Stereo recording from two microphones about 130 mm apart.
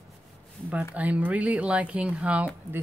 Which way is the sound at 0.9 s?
10° right (ahead or behind).